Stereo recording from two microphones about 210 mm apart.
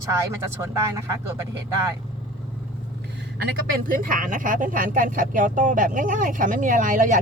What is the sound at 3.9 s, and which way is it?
Speech, 40° right (ahead or behind).